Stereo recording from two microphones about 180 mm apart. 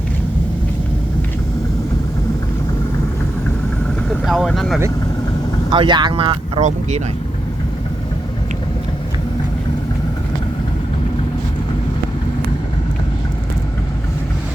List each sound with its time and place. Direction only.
4.3 s speech: centre (ahead or behind)
5.7 s speech: 25° right (ahead or behind)
6.6 s speech: 40° right (ahead or behind)